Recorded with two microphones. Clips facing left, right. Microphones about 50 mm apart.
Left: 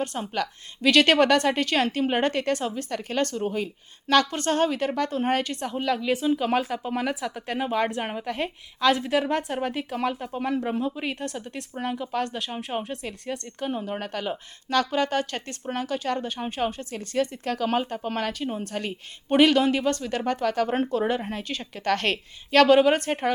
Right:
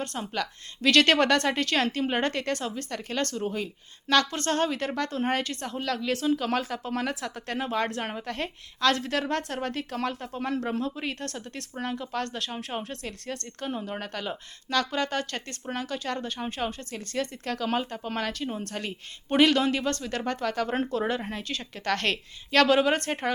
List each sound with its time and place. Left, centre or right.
0.0 s speech: centre
17.2 s a woman's voice: centre